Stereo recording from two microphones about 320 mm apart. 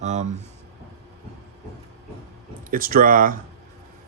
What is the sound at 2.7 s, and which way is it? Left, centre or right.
Speech, right.